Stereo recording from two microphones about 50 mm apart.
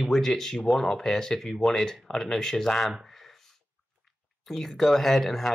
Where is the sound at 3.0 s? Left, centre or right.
Centre.